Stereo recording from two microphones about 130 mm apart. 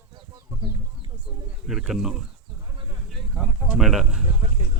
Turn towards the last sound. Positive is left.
turn(degrees=-5)  # may be behind; listen again after turning